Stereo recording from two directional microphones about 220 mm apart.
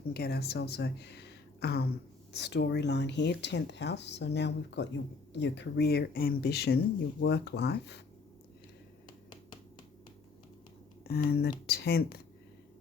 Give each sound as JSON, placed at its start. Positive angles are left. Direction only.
{"t": 0.1, "sound": "speech", "side_deg": 45}
{"t": 9.0, "sound": "finger snapping", "side_deg": 20}
{"t": 11.3, "sound": "speech", "side_deg": 45}